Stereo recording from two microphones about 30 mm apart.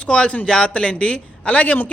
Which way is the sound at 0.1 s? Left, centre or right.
Left.